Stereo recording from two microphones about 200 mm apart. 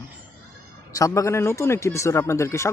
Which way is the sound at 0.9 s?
15° left (ahead or behind).